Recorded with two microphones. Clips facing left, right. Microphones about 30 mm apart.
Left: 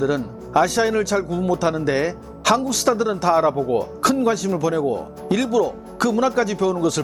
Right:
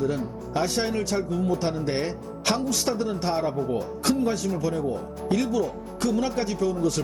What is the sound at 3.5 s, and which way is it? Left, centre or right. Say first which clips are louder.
Speech: left 6 dB; left.